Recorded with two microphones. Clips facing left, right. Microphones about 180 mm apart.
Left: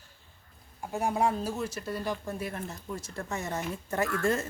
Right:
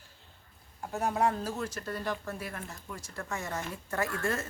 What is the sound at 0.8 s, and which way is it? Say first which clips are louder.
Speech: left 1 dB; 10° left (ahead or behind).